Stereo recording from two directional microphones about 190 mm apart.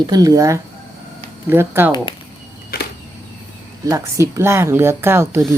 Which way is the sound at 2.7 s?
55° left (ahead or behind).